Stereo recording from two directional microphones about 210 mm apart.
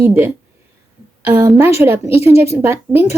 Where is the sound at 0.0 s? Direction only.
10° right (ahead or behind).